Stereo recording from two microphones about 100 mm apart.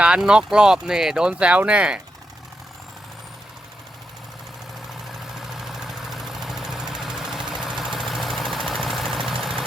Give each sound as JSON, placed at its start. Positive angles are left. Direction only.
{"t": 0.0, "sound": "speech", "side_deg": -10}
{"t": 5.4, "sound": "engine", "side_deg": -5}